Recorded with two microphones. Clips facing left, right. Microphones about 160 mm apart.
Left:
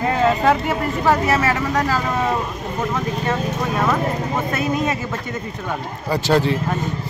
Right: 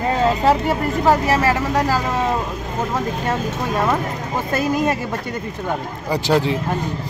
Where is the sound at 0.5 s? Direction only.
35° right (ahead or behind).